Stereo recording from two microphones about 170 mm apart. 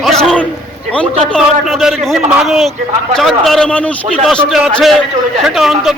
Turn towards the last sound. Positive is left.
turn(degrees=0)  # may be behind; listen again after turning